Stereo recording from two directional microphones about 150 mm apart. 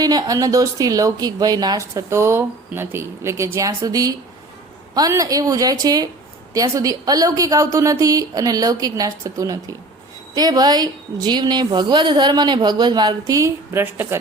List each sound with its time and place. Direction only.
0.0 s speech: 25° right (ahead or behind)